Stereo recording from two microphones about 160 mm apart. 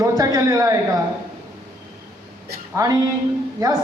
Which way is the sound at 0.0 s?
20° right (ahead or behind).